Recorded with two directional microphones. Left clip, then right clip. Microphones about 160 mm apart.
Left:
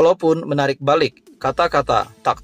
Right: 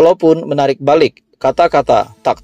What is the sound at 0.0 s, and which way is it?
Speech, 20° right (ahead or behind).